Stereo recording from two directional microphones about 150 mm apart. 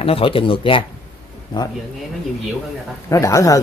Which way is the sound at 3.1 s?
20° left (ahead or behind).